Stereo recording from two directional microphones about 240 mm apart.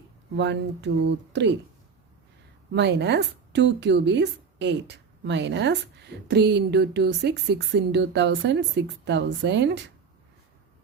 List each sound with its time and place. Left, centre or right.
0.3 s speech: right
2.7 s speech: right